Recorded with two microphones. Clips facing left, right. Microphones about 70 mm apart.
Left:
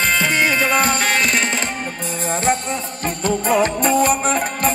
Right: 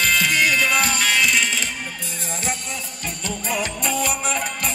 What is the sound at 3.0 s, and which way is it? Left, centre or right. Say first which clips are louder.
Music: left 10 dB; left.